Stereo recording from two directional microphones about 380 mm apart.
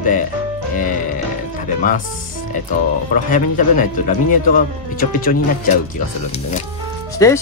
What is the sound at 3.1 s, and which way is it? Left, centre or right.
Speech, centre.